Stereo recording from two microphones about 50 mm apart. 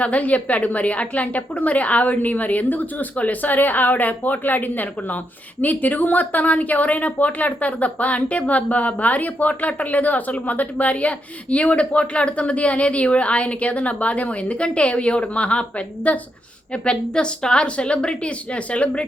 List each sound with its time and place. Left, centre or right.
0.0 s a woman's voice: left